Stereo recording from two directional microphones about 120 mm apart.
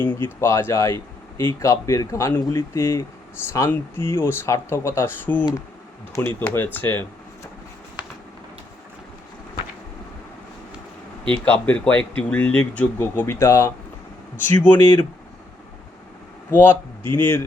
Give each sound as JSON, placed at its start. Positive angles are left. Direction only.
{"t": 0.0, "sound": "speech", "side_deg": 20}
{"t": 11.4, "sound": "speech", "side_deg": 10}
{"t": 16.5, "sound": "speech", "side_deg": 15}